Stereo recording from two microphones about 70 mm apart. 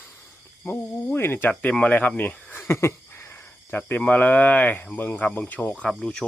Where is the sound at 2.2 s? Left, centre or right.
Left.